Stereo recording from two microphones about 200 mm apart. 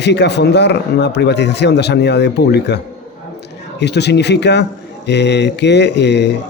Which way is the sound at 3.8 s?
55° left (ahead or behind).